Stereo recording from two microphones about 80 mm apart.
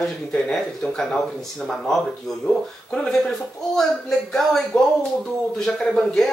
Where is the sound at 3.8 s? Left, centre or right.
Centre.